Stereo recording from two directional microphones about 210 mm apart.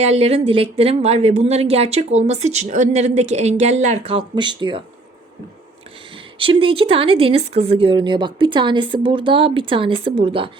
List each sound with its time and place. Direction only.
0.0 s speech: 30° right (ahead or behind)
6.4 s speech: 25° right (ahead or behind)